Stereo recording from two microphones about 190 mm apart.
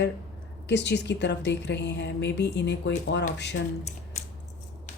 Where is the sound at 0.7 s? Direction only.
65° left (ahead or behind).